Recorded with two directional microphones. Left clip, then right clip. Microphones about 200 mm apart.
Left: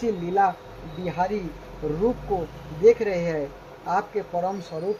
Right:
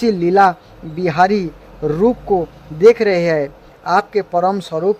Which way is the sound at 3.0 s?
45° right (ahead or behind).